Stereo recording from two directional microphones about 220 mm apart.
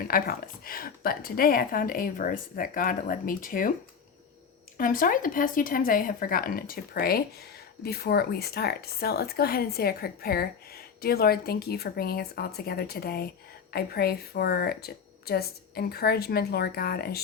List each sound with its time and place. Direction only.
0.1 s a woman's voice: 40° left (ahead or behind)
4.8 s a woman's voice: 40° left (ahead or behind)